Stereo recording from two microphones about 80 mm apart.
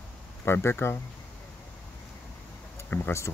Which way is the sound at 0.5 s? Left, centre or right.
Left.